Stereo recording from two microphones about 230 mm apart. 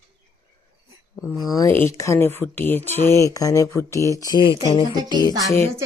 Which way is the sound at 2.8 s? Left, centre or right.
Right.